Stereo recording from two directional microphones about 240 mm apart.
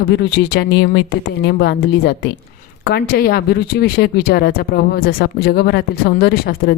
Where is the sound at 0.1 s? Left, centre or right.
Left.